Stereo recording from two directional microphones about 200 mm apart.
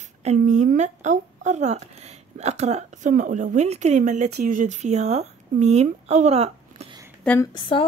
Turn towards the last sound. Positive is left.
turn(degrees=25)  # may be behind; listen again after turning